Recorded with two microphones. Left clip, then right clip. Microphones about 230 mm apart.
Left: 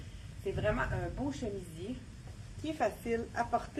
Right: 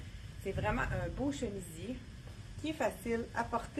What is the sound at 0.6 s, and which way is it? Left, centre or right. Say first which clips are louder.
Speech: left 2 dB; right.